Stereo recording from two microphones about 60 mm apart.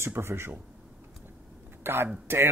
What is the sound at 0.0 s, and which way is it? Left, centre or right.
Speech, right.